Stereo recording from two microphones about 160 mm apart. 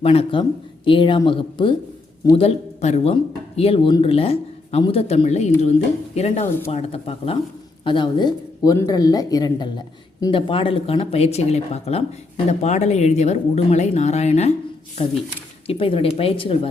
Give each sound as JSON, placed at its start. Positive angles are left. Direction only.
{"t": 0.0, "sound": "speech", "side_deg": 35}
{"t": 15.6, "sound": "speech", "side_deg": 35}